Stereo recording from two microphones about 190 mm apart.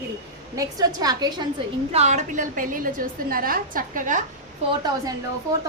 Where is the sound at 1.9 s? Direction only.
35° right (ahead or behind).